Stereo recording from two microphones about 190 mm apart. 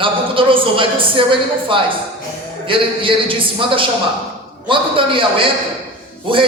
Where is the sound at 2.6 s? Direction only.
25° right (ahead or behind).